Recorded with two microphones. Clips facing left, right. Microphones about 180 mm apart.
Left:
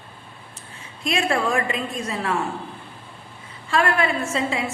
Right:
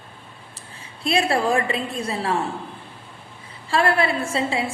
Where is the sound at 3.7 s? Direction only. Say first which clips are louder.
Right 1 dB; 30° right (ahead or behind).